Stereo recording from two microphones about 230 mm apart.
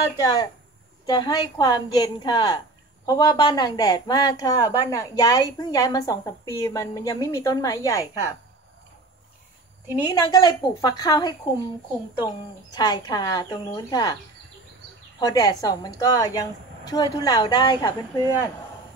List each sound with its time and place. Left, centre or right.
0.2 s a woman's voice: centre
10.0 s a woman's voice: centre
15.1 s a woman's voice: centre